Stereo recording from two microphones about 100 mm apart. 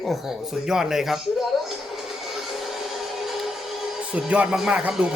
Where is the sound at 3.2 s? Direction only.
Centre (ahead or behind).